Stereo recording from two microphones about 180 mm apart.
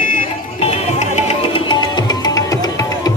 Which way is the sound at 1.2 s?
35° left (ahead or behind).